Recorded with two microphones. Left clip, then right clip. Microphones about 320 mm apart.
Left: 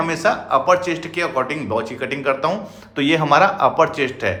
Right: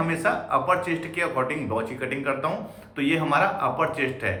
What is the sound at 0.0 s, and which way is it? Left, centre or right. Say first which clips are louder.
A man's voice: left 6 dB; centre.